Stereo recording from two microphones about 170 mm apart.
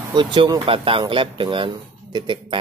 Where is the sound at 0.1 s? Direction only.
30° right (ahead or behind).